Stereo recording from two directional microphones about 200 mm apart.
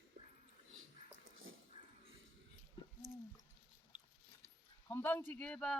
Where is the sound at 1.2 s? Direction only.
80° right.